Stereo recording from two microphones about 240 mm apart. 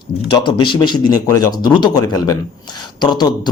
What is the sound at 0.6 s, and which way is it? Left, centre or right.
A man's voice, centre.